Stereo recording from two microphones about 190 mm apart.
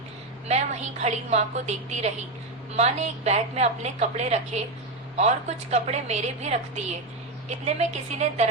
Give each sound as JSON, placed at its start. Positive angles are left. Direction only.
{"t": 0.4, "sound": "a woman's voice", "side_deg": -35}